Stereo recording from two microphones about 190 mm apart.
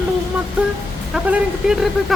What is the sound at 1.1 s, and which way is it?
Speech, 5° right (ahead or behind).